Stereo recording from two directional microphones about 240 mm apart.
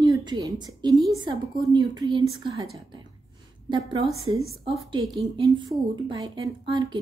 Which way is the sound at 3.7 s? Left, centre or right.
Centre.